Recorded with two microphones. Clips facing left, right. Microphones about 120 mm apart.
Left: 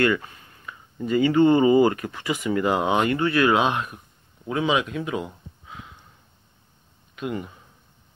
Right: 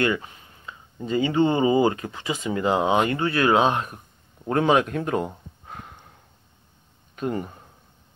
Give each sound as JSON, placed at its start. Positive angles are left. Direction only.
{"t": 0.0, "sound": "speech", "side_deg": -20}
{"t": 4.5, "sound": "a sound", "side_deg": -50}
{"t": 7.2, "sound": "speech", "side_deg": -40}